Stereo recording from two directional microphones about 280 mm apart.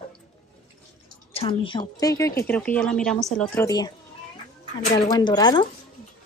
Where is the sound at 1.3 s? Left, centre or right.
Centre.